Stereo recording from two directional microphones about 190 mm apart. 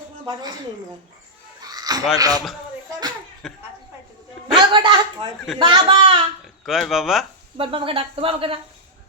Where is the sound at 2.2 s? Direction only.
20° right (ahead or behind).